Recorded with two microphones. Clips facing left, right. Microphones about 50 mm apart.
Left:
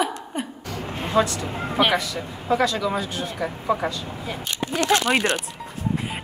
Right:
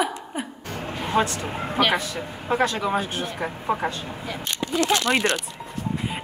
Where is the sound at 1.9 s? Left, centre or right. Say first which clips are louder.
Left 1 dB; right.